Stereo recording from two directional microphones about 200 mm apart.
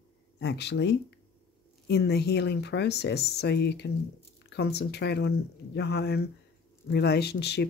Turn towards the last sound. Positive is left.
turn(degrees=55)  # may be behind; listen again after turning